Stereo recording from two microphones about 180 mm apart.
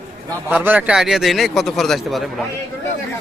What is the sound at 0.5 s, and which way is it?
A man's voice, 10° right (ahead or behind).